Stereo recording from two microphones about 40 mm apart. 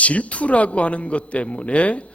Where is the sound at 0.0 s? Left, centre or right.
Left.